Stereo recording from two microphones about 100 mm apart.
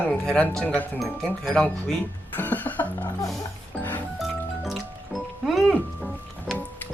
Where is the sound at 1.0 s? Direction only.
5° left (ahead or behind).